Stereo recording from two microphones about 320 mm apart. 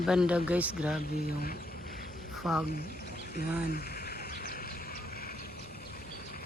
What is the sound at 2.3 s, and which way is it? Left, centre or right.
Speech, centre.